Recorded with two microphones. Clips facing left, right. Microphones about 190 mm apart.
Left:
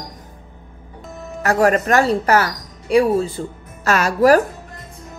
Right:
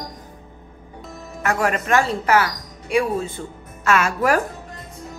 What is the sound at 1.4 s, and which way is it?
Speech, 35° left (ahead or behind).